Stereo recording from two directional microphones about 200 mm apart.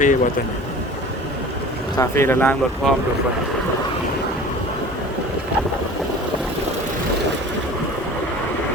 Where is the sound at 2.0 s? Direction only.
15° left (ahead or behind).